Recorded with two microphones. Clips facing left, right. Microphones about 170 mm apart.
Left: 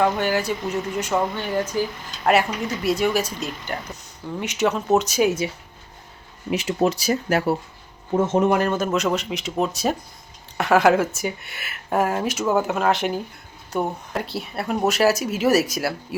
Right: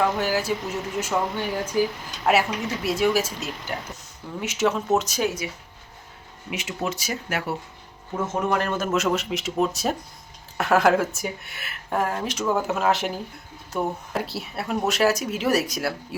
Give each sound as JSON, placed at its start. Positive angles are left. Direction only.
{"t": 0.0, "sound": "speech", "side_deg": 0}
{"t": 5.4, "sound": "speech", "side_deg": 30}
{"t": 8.1, "sound": "speech", "side_deg": 25}
{"t": 8.5, "sound": "speech", "side_deg": 0}